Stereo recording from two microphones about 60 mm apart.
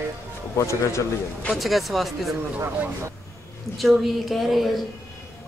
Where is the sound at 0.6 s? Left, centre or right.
Left.